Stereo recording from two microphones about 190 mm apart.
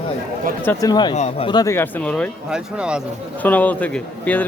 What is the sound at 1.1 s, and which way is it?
Speech, 35° left (ahead or behind).